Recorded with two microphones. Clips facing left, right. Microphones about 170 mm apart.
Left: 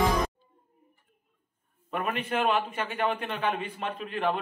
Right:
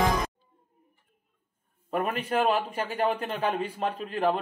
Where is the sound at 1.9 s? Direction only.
35° right (ahead or behind).